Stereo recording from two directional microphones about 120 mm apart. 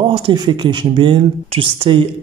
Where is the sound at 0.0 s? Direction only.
40° right (ahead or behind).